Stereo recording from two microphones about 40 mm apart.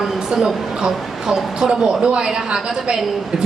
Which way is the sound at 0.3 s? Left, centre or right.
Centre.